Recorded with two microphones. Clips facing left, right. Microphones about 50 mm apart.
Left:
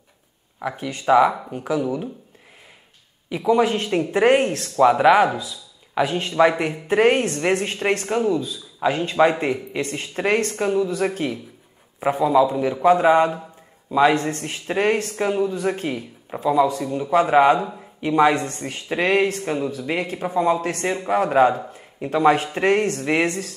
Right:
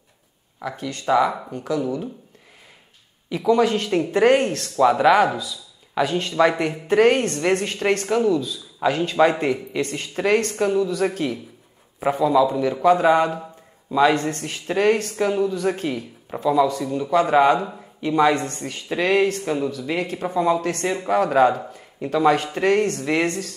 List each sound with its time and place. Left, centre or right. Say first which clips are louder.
0.6 s speech: left 2 dB; centre
1.3 s speech: left 1 dB; centre
3.3 s speech: even; centre
8.3 s a man's voice: right 1 dB; left
8.7 s speech: even; centre
20.0 s speech: even; centre